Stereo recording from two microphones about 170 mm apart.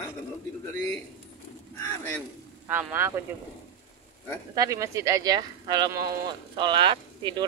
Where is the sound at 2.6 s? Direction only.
10° right (ahead or behind).